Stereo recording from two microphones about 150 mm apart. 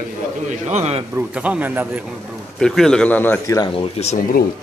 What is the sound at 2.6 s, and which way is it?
Speech, 5° left (ahead or behind).